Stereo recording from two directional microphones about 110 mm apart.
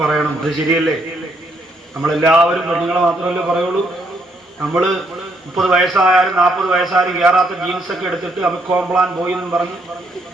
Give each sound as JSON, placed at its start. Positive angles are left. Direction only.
{"t": 0.0, "sound": "a man's voice", "side_deg": 0}
{"t": 2.0, "sound": "a man's voice", "side_deg": 0}
{"t": 4.7, "sound": "a man's voice", "side_deg": -5}